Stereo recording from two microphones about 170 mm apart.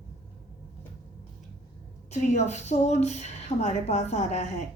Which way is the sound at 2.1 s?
40° left (ahead or behind).